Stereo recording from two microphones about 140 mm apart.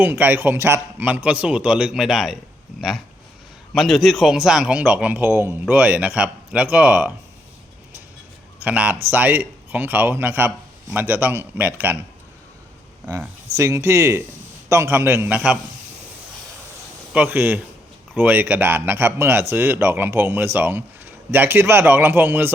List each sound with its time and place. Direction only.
0.0 s speech: 15° right (ahead or behind)
3.8 s speech: centre (ahead or behind)
8.6 s speech: 10° right (ahead or behind)
13.1 s speech: 20° right (ahead or behind)
17.1 s speech: 10° right (ahead or behind)